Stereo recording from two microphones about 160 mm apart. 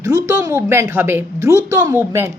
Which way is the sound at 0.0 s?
20° right (ahead or behind).